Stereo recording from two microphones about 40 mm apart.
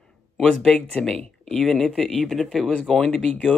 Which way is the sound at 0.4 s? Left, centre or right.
Centre.